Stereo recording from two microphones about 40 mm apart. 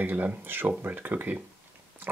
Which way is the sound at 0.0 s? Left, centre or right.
Right.